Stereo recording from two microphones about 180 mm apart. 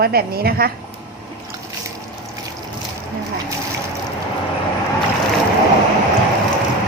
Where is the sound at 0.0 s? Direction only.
60° right (ahead or behind).